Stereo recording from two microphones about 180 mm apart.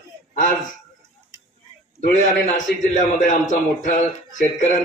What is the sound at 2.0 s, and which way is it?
A man's voice, 45° left (ahead or behind).